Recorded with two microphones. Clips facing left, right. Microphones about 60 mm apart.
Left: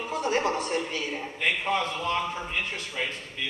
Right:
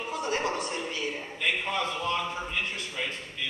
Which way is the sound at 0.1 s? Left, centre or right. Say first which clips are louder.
Left 4 dB; left.